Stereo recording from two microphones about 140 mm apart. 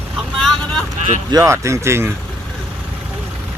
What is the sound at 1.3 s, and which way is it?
Speech, 25° right (ahead or behind).